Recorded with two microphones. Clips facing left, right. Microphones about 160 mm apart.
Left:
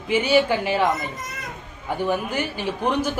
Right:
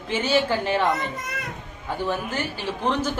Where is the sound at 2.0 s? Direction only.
15° left (ahead or behind).